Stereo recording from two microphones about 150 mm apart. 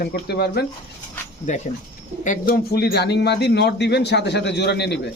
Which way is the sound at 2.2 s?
70° left (ahead or behind).